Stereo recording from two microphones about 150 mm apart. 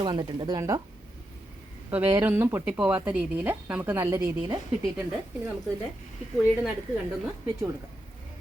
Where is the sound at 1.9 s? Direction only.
15° right (ahead or behind).